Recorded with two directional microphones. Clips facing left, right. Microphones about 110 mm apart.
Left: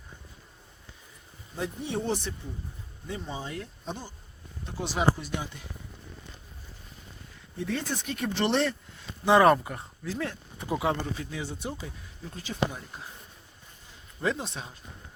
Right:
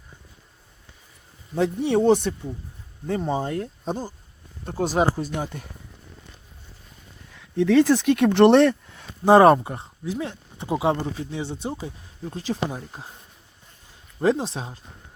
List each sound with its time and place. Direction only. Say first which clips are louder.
1.5 s speech: right 11 dB; 75° right (ahead or behind)
3.1 s speech: right 11 dB; 50° right (ahead or behind)
7.3 s speech: right 15 dB; 90° right; by 9.0 s 60° right (ahead or behind)
9.2 s speech: right 6 dB; 35° right (ahead or behind)
14.2 s speech: right 9 dB; 35° right (ahead or behind)